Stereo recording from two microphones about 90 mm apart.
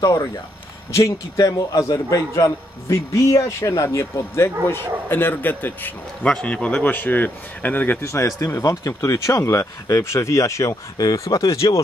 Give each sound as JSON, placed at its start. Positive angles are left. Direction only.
{"t": 0.9, "sound": "a man's voice", "side_deg": 35}
{"t": 8.0, "sound": "a man's voice", "side_deg": 35}